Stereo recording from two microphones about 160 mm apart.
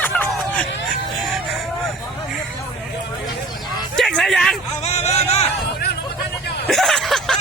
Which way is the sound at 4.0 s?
Centre (ahead or behind).